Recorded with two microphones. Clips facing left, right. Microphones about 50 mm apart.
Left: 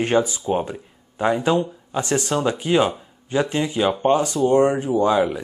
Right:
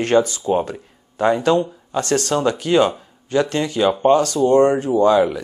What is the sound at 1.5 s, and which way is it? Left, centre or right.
Speech, centre.